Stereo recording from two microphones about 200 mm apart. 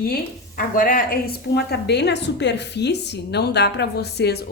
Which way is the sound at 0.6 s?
45° left (ahead or behind).